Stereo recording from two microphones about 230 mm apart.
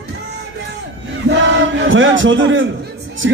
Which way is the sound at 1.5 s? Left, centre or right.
Right.